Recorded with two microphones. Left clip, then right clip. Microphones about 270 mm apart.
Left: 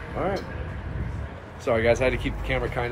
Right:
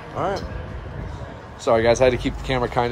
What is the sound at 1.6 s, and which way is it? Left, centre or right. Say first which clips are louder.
Speech: right 5 dB; centre.